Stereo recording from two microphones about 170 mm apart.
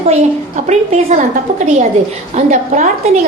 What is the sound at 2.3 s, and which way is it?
Speech, 45° right (ahead or behind).